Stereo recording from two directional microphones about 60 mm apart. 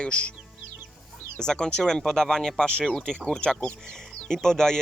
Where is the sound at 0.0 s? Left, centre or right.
Left.